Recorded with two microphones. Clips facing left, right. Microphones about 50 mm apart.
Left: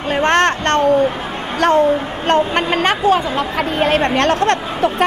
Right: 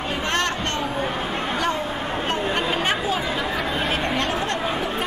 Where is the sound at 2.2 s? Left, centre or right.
Left.